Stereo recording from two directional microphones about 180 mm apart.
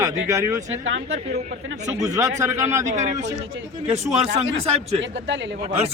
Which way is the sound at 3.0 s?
40° right (ahead or behind).